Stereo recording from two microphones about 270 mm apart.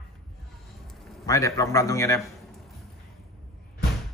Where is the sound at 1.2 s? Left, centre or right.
Centre.